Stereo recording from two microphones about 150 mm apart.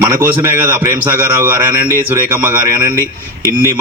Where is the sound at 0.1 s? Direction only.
15° right (ahead or behind).